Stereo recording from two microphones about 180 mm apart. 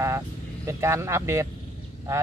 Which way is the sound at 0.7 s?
15° right (ahead or behind).